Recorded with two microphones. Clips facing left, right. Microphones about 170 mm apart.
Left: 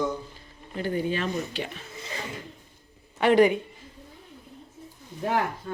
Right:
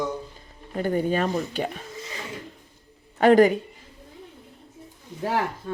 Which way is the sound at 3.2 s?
40° right (ahead or behind).